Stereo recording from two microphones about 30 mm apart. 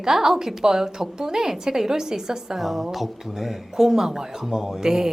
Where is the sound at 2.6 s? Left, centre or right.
Centre.